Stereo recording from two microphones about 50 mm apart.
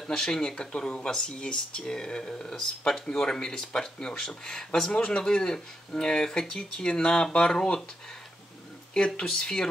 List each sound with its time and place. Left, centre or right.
0.0 s speech: centre
8.9 s speech: centre